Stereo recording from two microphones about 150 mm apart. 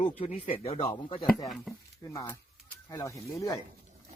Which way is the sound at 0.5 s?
45° left (ahead or behind).